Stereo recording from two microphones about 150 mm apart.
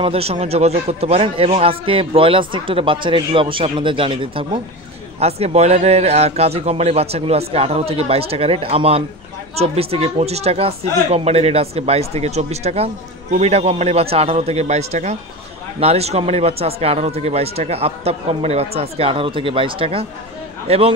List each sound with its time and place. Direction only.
0.0 s a man's voice: 40° right (ahead or behind)
5.2 s speech: 45° right (ahead or behind)